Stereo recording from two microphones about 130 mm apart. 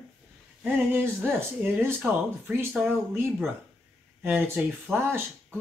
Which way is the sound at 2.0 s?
10° right (ahead or behind).